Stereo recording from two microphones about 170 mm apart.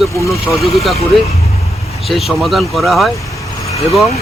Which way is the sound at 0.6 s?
Centre (ahead or behind).